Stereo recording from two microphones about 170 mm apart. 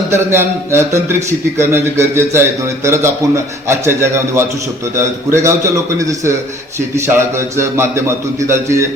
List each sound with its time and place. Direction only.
0.1 s a man's voice: 15° right (ahead or behind)